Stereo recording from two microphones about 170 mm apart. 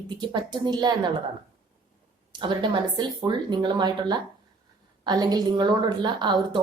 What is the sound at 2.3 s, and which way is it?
A woman's voice, 25° right (ahead or behind).